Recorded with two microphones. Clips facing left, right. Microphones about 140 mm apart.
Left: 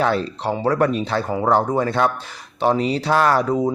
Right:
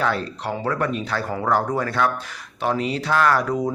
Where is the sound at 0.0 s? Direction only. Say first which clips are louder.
Left 4 dB; 30° left (ahead or behind).